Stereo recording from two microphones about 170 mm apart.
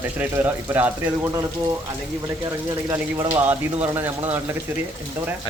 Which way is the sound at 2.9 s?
20° right (ahead or behind).